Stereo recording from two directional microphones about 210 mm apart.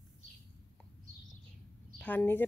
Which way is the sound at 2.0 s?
10° left (ahead or behind).